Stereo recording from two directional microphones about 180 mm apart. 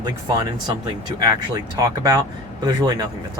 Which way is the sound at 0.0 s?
25° right (ahead or behind).